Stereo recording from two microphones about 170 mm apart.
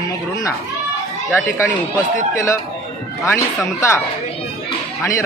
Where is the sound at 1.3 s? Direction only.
15° left (ahead or behind).